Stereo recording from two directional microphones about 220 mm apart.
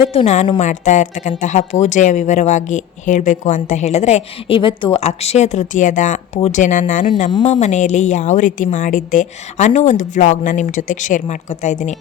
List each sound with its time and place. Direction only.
0.1 s a woman's voice: 30° left (ahead or behind)
7.0 s a woman's voice: 20° left (ahead or behind)